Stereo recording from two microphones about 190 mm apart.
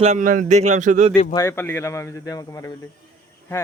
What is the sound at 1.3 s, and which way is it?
Speech, 15° left (ahead or behind).